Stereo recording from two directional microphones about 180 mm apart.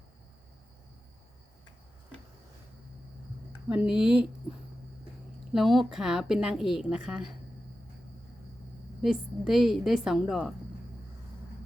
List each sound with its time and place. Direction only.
3.9 s a woman's voice: 5° right (ahead or behind)
5.5 s a woman's voice: centre (ahead or behind)
9.0 s a woman's voice: 5° right (ahead or behind)